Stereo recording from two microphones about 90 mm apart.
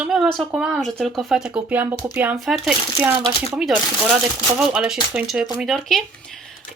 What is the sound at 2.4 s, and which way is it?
A woman's voice, 5° right (ahead or behind).